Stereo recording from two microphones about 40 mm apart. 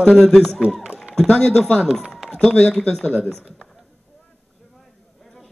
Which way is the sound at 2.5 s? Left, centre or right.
Left.